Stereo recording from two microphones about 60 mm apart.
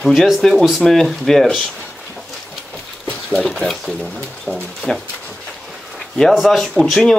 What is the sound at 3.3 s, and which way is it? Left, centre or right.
Speech, centre.